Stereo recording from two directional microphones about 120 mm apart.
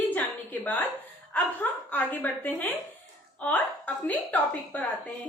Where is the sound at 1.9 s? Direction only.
15° left (ahead or behind).